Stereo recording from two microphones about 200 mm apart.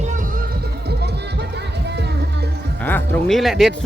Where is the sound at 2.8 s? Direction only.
10° left (ahead or behind).